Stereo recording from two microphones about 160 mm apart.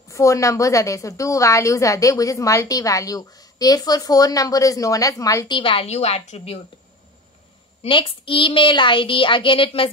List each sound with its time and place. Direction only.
0.1 s a woman's voice: 20° left (ahead or behind)
5.6 s a woman's voice: 35° left (ahead or behind)
7.8 s a woman's voice: 35° left (ahead or behind)